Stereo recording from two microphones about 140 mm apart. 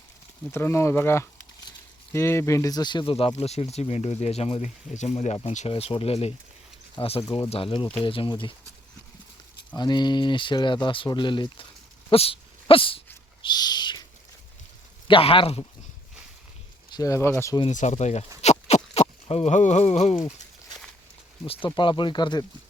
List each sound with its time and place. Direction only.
0.5 s speech: 20° left (ahead or behind)
3.1 s speech: 40° left (ahead or behind)
9.7 s speech: 30° left (ahead or behind)
12.1 s dog: 45° left (ahead or behind)
13.4 s owl: 30° left (ahead or behind)
15.0 s speech: 40° left (ahead or behind)
16.9 s speech: 25° left (ahead or behind)
17.7 s speech: 60° left (ahead or behind)
18.4 s a sound: 50° left (ahead or behind)
21.4 s speech: 40° left (ahead or behind)